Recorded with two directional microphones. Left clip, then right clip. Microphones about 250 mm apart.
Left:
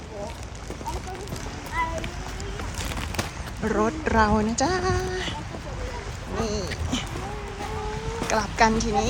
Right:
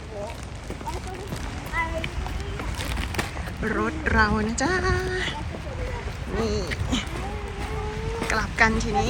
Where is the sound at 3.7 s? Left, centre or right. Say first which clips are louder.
Left 2 dB; centre.